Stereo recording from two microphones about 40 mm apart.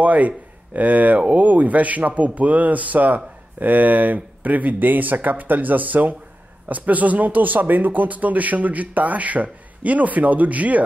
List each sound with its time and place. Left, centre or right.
0.0 s speech: right